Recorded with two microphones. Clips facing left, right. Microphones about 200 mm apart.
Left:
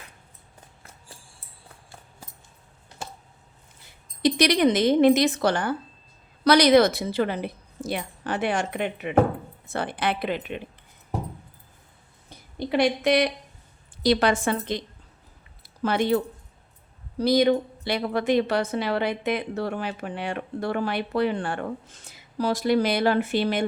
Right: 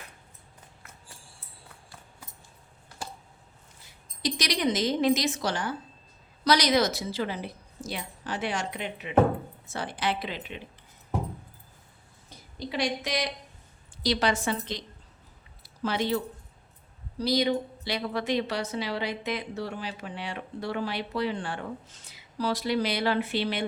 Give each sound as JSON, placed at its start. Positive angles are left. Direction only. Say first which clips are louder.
{"t": 4.2, "sound": "a woman's voice", "louder": "left 9 dB", "side_deg": 60}
{"t": 12.5, "sound": "a woman's voice", "louder": "left 7 dB", "side_deg": 60}